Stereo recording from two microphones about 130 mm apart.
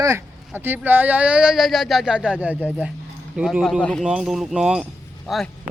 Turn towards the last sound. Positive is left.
turn(degrees=0)  # may be behind; listen again after turning